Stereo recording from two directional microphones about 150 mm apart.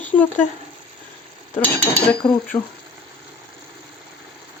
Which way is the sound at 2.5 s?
30° left (ahead or behind).